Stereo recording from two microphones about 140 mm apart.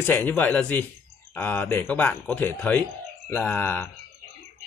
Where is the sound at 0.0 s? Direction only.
15° left (ahead or behind).